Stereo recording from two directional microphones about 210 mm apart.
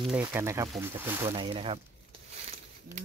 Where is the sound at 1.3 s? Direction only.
25° right (ahead or behind).